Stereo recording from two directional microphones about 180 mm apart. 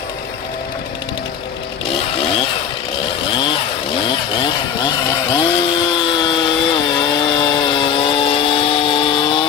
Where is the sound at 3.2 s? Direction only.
30° left (ahead or behind).